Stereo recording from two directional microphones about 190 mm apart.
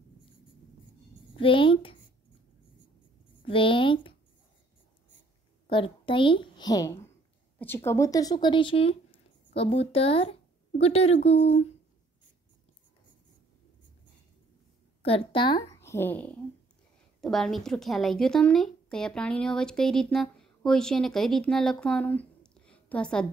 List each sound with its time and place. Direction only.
1.3 s a woman's voice: 25° left (ahead or behind)
3.4 s a sound: 25° left (ahead or behind)
5.7 s a woman's voice: 25° left (ahead or behind)
15.0 s a woman's voice: 30° left (ahead or behind); by 23.2 s 5° left (ahead or behind)